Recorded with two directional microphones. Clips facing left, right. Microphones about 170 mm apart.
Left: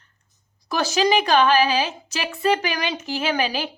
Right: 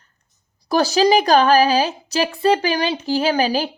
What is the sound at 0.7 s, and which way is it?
A woman's voice, 35° right (ahead or behind).